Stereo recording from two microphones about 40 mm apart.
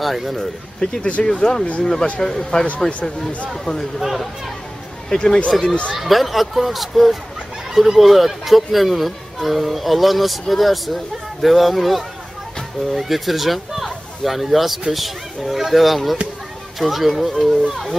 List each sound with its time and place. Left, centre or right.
0.0 s speech: centre
0.8 s speech: left
2.9 s speech: left
4.0 s speech: centre
5.1 s speech: centre
5.5 s speech: centre